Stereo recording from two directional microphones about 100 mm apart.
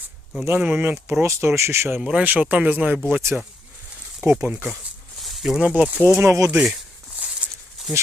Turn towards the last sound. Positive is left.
turn(degrees=-5)  # may be behind; listen again after turning